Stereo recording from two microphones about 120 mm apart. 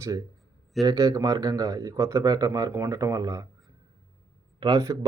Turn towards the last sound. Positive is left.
turn(degrees=-30)  # may be behind; listen again after turning